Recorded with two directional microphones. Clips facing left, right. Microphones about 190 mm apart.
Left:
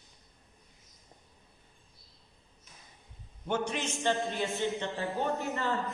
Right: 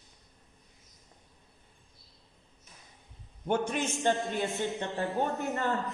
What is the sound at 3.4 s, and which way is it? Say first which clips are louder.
Speech: right 3 dB; 50° right (ahead or behind).